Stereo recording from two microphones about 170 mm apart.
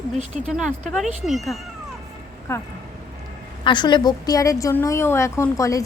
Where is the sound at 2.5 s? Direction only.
15° left (ahead or behind).